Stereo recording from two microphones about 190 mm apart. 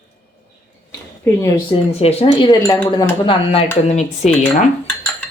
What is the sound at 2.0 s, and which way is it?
A woman's voice, 30° left (ahead or behind).